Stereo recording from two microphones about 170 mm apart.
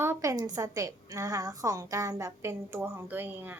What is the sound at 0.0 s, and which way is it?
A woman's voice, 15° right (ahead or behind).